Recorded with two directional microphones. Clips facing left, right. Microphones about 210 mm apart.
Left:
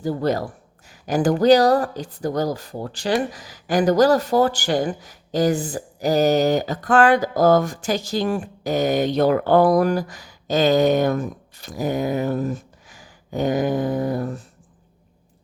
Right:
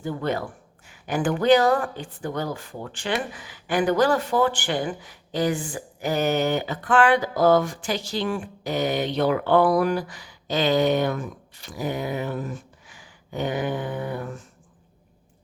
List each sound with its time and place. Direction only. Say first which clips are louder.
0.0 s speech: left 5 dB; 40° left (ahead or behind)